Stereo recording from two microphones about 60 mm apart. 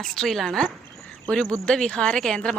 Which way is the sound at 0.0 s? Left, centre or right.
Centre.